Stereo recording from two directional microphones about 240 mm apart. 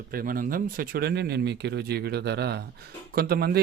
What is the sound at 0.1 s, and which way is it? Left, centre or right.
Speech, right.